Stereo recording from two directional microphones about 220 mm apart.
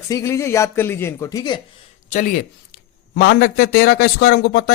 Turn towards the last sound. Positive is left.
turn(degrees=50)  # may be behind; listen again after turning